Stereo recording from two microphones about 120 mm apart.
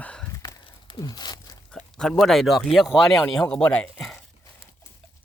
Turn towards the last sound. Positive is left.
turn(degrees=5)  # may be behind; listen again after turning